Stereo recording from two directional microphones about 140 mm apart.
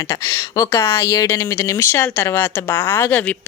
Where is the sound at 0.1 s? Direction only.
20° left (ahead or behind).